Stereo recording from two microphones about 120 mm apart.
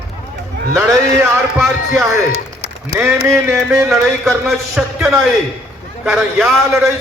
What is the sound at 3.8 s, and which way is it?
Speech, 5° right (ahead or behind).